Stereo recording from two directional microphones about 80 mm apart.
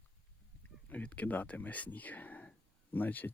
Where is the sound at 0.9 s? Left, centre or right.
Centre.